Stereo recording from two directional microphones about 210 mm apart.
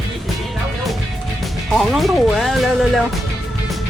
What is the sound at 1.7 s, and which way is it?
Speech, centre (ahead or behind).